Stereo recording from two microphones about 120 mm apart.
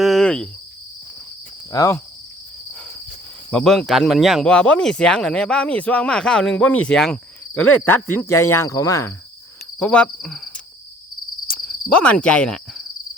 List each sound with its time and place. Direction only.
0.0 s cricket: centre (ahead or behind)
1.7 s speech: 25° left (ahead or behind)
3.5 s speech: 5° left (ahead or behind); by 9.1 s 25° left (ahead or behind)
9.7 s speech: 10° left (ahead or behind)
11.6 s cricket: 10° left (ahead or behind)